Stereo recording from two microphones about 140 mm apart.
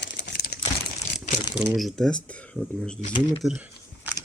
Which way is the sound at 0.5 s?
90° left.